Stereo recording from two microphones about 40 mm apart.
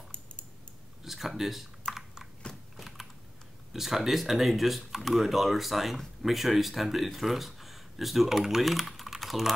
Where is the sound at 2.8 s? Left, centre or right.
Centre.